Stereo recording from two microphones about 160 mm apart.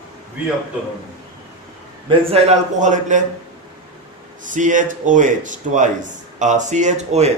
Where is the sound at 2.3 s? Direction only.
45° right (ahead or behind).